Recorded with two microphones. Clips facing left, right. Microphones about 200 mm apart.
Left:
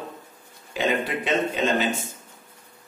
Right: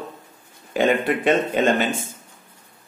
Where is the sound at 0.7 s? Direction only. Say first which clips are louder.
Right 5 dB; 55° right (ahead or behind).